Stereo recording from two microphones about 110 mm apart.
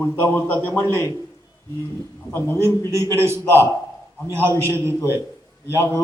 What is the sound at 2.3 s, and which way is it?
Speech, 20° left (ahead or behind).